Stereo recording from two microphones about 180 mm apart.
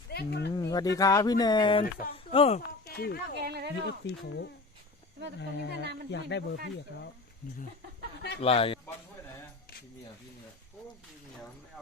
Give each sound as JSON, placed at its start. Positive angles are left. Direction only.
{"t": 0.1, "sound": "speech", "side_deg": 65}
{"t": 0.5, "sound": "speech", "side_deg": 20}
{"t": 2.8, "sound": "speech", "side_deg": 55}
{"t": 3.4, "sound": "speech", "side_deg": -65}
{"t": 3.8, "sound": "speech", "side_deg": 70}
{"t": 5.8, "sound": "speech", "side_deg": -70}
{"t": 6.1, "sound": "speech", "side_deg": 75}
{"t": 8.4, "sound": "speech", "side_deg": 30}